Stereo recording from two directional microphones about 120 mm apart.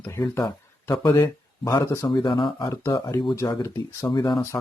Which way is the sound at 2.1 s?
40° left (ahead or behind).